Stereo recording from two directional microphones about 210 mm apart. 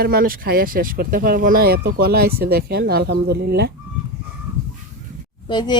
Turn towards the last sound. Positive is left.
turn(degrees=20)  # may be behind; listen again after turning